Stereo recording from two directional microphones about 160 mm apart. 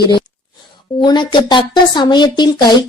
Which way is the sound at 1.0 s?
30° left (ahead or behind).